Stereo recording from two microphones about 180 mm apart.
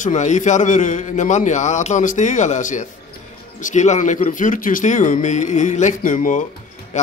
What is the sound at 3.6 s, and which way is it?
Speech, 45° left (ahead or behind).